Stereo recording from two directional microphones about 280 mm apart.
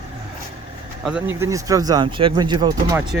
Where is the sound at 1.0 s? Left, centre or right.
Centre.